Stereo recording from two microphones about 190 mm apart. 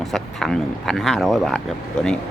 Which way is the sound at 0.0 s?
Centre (ahead or behind).